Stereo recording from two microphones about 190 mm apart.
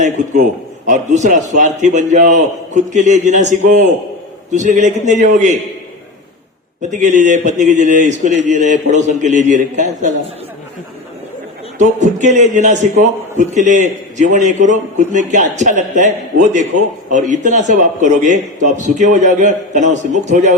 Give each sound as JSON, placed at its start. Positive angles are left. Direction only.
{"t": 0.2, "sound": "a man's voice", "side_deg": -40}
{"t": 6.9, "sound": "a man's voice", "side_deg": -40}
{"t": 11.8, "sound": "a man's voice", "side_deg": -40}